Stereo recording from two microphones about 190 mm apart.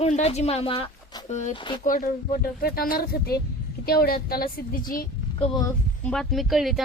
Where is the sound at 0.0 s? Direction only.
35° left (ahead or behind).